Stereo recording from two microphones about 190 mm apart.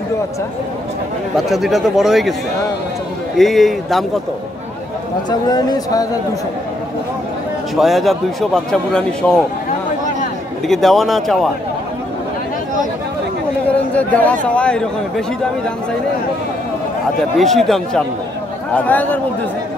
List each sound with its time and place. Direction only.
1.3 s speech: centre (ahead or behind)
3.3 s speech: centre (ahead or behind)
5.5 s speech: 20° left (ahead or behind)
7.7 s speech: centre (ahead or behind)
10.7 s speech: centre (ahead or behind)
13.7 s speech: 5° left (ahead or behind)
17.2 s speech: centre (ahead or behind)